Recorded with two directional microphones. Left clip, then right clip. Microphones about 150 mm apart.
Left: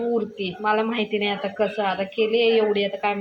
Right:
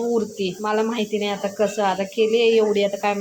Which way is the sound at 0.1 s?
30° right (ahead or behind).